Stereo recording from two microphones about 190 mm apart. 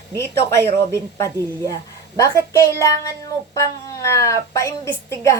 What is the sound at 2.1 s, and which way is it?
A woman's voice, 15° left (ahead or behind).